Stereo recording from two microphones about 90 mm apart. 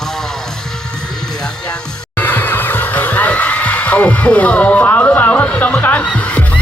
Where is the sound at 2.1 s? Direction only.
20° left (ahead or behind).